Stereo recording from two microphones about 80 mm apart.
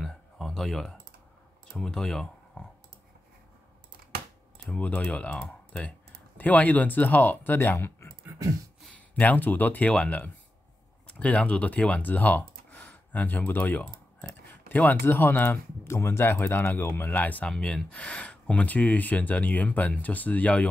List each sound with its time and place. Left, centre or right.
0.0 s a sound: centre
1.7 s speech: centre
4.6 s speech: centre
8.9 s speech: centre
17.5 s speech: centre